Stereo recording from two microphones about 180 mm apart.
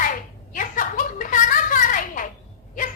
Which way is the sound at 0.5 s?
45° left (ahead or behind).